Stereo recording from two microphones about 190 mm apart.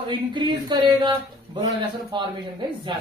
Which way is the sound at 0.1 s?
25° right (ahead or behind).